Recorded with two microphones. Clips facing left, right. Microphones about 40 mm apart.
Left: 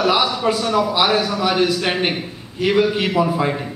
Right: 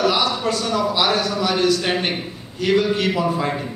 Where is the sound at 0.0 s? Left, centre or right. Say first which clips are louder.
Left 2 dB; centre.